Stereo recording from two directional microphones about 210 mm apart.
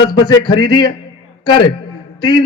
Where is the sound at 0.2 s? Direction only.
20° left (ahead or behind).